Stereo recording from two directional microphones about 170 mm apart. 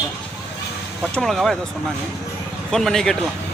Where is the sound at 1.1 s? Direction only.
Centre (ahead or behind).